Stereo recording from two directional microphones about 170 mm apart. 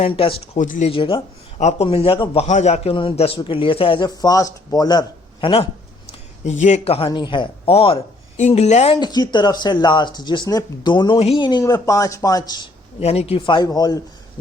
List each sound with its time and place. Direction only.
0.0 s a man's voice: 30° left (ahead or behind)
0.6 s speech: 50° left (ahead or behind)
0.9 s a man's voice: 30° left (ahead or behind)
6.1 s a man's voice: 40° left (ahead or behind)
9.0 s speech: 25° left (ahead or behind)
13.0 s speech: 40° left (ahead or behind)